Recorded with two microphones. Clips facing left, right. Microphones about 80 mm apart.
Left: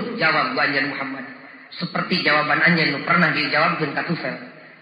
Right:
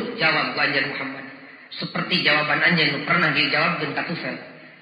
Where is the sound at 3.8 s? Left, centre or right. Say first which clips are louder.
Left 2 dB; centre.